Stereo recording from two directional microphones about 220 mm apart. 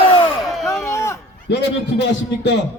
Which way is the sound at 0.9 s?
15° left (ahead or behind).